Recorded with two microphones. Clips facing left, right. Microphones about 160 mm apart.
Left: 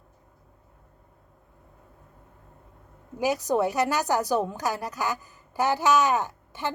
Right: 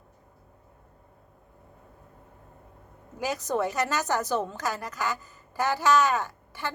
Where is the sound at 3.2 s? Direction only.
15° left (ahead or behind).